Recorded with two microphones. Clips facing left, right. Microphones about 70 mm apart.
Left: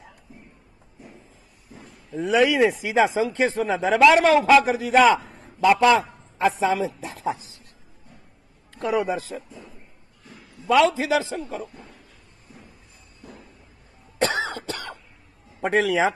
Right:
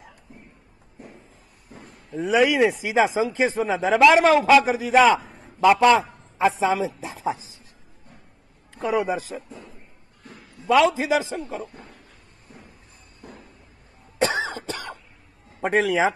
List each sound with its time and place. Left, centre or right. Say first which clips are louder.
0.3 s a sound: even; right
2.0 s speech: even; centre
6.6 s a man's voice: even; centre
7.2 s a sound: right 1 dB; centre
8.7 s a man's voice: even; centre
9.3 s a sound: even; centre
10.9 s a man's voice: even; centre
13.2 s music: right 1 dB; centre
14.1 s cough: right 1 dB; centre
14.4 s cough: even; centre
15.6 s speech: even; centre